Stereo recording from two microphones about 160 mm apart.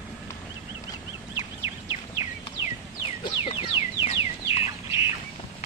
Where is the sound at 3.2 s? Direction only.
30° left (ahead or behind).